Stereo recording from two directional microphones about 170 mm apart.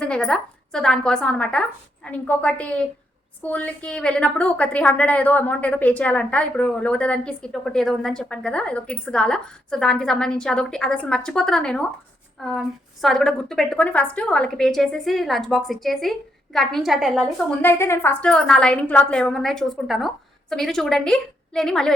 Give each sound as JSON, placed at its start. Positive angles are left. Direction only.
{"t": 0.0, "sound": "a woman's voice", "side_deg": 5}
{"t": 17.6, "sound": "a woman's voice", "side_deg": 15}